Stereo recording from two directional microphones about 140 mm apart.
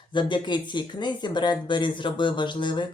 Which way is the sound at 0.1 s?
35° left (ahead or behind).